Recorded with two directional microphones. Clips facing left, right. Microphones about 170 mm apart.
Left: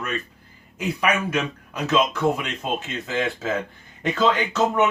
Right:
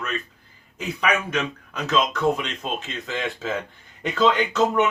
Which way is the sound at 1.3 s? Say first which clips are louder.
Left 1 dB; 10° left (ahead or behind).